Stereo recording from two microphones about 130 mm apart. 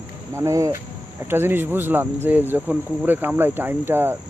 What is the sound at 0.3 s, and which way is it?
Speech, 25° right (ahead or behind).